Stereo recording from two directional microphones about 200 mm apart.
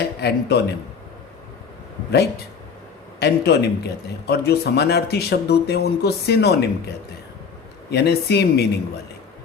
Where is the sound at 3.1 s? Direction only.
55° left (ahead or behind).